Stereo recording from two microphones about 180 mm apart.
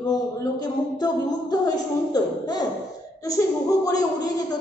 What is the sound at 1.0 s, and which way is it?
Speech, 20° left (ahead or behind).